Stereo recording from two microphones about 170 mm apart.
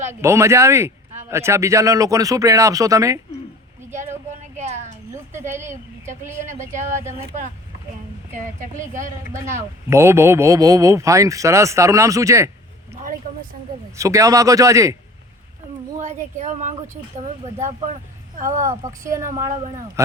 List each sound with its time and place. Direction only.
0.1 s speech: 15° right (ahead or behind)
4.5 s a sound: 40° right (ahead or behind)
5.1 s speech: 15° right (ahead or behind)
7.0 s speech: 15° right (ahead or behind)
9.3 s speech: 15° right (ahead or behind)
13.9 s a man's voice: 20° right (ahead or behind)
16.4 s speech: 45° right (ahead or behind)
18.3 s a man's voice: 20° right (ahead or behind)